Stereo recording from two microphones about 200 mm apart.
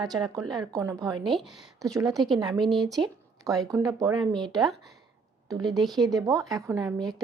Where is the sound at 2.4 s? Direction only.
20° right (ahead or behind).